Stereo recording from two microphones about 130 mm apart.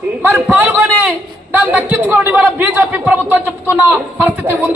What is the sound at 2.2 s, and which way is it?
Music, 15° right (ahead or behind).